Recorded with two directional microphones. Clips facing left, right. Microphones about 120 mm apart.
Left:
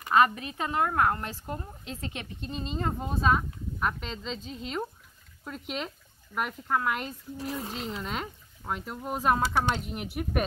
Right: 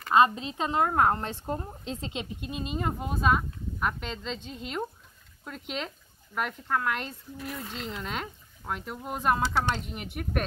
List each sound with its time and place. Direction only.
0.1 s a woman's voice: 20° right (ahead or behind); by 7.2 s 5° left (ahead or behind)
7.3 s speech: 30° left (ahead or behind)
7.9 s speech: centre (ahead or behind)